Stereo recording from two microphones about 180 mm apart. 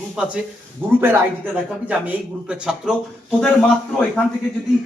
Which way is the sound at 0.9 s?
10° right (ahead or behind).